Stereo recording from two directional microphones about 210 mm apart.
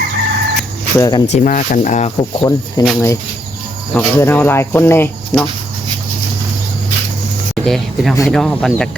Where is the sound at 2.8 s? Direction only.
20° left (ahead or behind).